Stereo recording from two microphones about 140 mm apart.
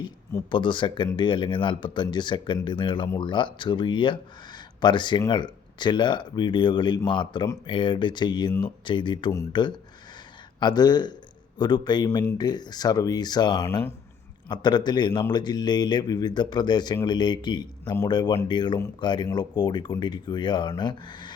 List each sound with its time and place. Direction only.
0.5 s speech: 35° left (ahead or behind)